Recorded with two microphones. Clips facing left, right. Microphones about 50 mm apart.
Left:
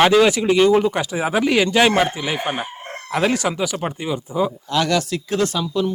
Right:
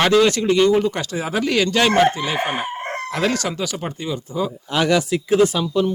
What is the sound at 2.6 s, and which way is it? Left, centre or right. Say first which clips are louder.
Crowing: right 6 dB; right.